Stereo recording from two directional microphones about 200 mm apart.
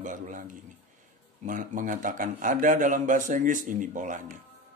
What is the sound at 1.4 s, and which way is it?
A man's voice, 40° right (ahead or behind).